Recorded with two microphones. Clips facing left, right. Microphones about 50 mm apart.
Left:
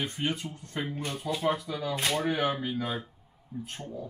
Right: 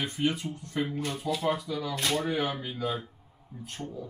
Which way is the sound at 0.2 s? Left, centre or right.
Centre.